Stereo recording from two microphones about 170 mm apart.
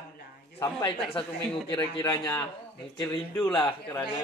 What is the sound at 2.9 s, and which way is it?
A man's voice, 25° left (ahead or behind).